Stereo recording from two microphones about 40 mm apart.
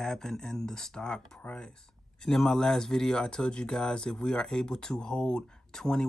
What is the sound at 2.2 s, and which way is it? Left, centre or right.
Speech, centre.